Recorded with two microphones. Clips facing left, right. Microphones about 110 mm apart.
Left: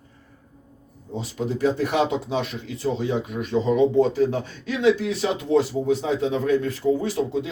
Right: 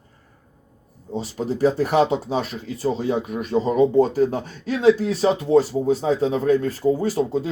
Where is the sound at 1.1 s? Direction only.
40° right (ahead or behind).